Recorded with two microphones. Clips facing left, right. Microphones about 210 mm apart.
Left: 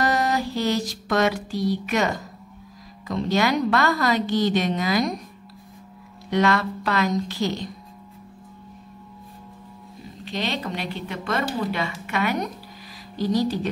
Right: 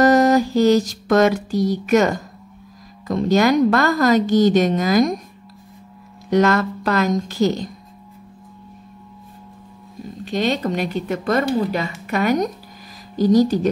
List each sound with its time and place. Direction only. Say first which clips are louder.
0.0 s a sound: right 9 dB; 45° right (ahead or behind)
3.1 s speech: right 6 dB; 45° right (ahead or behind)
6.3 s speech: right 5 dB; 45° right (ahead or behind)
10.2 s speech: right 7 dB; 45° right (ahead or behind)